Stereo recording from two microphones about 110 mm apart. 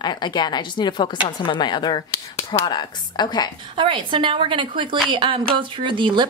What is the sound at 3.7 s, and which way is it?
A woman's voice, 50° right (ahead or behind).